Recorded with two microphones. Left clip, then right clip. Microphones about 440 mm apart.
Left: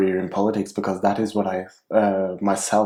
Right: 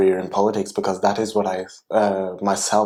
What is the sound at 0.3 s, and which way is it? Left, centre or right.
Speech, right.